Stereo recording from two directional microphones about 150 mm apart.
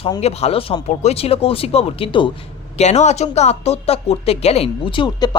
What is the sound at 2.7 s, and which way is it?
Speech, 50° left (ahead or behind).